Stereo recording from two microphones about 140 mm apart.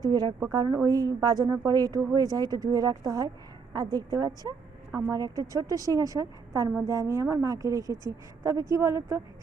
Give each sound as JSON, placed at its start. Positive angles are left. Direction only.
{"t": 0.0, "sound": "speech", "side_deg": -30}
{"t": 4.9, "sound": "a woman's voice", "side_deg": -15}
{"t": 5.1, "sound": "speech", "side_deg": -30}